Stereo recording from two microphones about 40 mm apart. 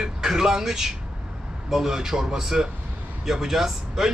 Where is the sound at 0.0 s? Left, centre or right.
Centre.